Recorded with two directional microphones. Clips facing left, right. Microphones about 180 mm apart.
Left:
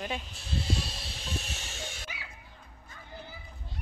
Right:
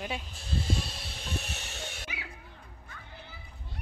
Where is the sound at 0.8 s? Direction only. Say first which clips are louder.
Even; 55° right (ahead or behind).